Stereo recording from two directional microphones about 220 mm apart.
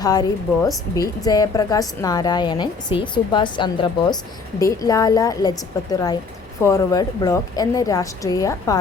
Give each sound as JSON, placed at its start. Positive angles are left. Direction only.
{"t": 0.0, "sound": "a woman's voice", "side_deg": 15}